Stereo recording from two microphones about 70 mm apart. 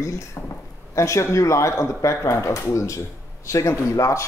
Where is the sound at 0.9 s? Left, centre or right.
Left.